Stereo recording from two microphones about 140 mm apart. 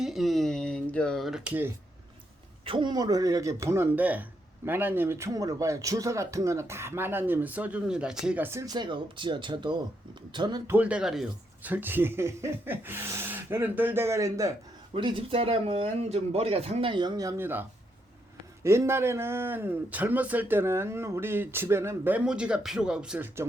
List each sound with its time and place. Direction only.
0.0 s a sound: centre (ahead or behind)
2.6 s speech: 35° right (ahead or behind); by 8.4 s 5° right (ahead or behind)
8.4 s speech: 25° right (ahead or behind)
10.7 s a man's voice: 10° right (ahead or behind)
11.7 s a man's voice: 15° right (ahead or behind)
14.9 s a man's voice: 40° right (ahead or behind); by 23.5 s 15° right (ahead or behind)